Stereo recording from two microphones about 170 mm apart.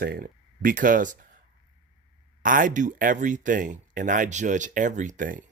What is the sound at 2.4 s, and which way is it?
Speech, 50° right (ahead or behind).